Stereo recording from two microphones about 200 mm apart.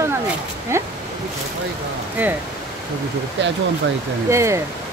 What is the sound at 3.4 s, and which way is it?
Speech, 60° right (ahead or behind).